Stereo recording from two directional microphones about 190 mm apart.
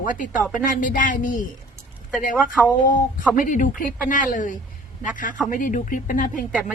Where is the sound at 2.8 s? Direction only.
45° left (ahead or behind).